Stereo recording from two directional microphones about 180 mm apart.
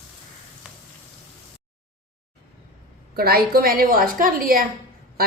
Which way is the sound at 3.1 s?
55° right (ahead or behind).